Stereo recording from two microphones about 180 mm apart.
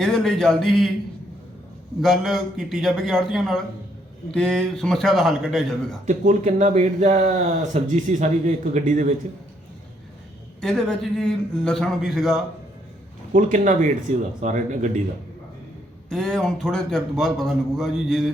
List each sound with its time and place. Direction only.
0.0 s a man's voice: centre (ahead or behind)
2.0 s a man's voice: centre (ahead or behind)
6.1 s speech: 45° right (ahead or behind)
10.6 s a man's voice: 5° left (ahead or behind)
13.3 s speech: 45° right (ahead or behind)
16.0 s a man's voice: 5° left (ahead or behind)